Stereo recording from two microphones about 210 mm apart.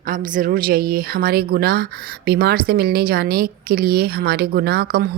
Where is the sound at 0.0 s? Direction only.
40° right (ahead or behind).